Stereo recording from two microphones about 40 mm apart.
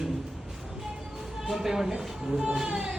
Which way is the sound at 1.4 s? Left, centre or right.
Centre.